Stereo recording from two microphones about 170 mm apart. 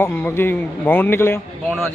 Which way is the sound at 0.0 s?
15° left (ahead or behind).